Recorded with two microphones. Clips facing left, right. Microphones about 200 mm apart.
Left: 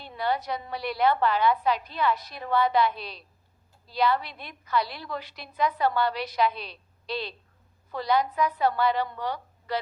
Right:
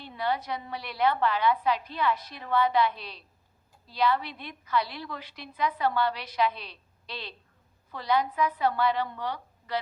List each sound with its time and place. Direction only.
0.2 s a woman's voice: 40° left (ahead or behind)
7.9 s a woman's voice: 40° left (ahead or behind)